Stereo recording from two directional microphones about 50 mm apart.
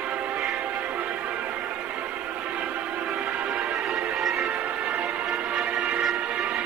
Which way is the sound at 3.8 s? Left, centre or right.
Centre.